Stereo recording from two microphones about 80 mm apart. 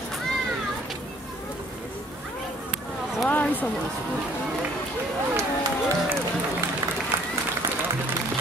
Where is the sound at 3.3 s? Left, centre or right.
Left.